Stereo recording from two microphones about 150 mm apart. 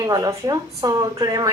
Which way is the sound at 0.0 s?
25° right (ahead or behind).